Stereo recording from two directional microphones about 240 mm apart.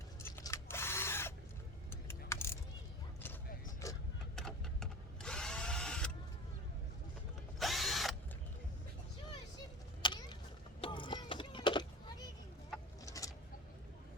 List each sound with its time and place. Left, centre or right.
0.2 s drill: centre
2.0 s keys jangling: centre
3.8 s vehicle: centre
4.4 s drill: centre
7.6 s drill: centre
10.0 s a sound: centre
13.1 s a sound: centre